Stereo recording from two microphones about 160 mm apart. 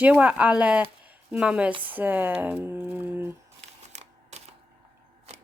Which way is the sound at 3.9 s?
45° right (ahead or behind).